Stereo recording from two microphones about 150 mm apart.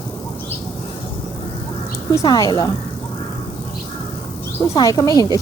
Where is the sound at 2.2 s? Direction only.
25° left (ahead or behind).